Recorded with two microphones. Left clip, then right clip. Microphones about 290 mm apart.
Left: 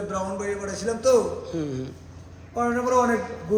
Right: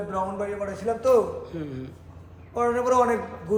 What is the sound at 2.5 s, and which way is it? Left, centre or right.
Speech, right.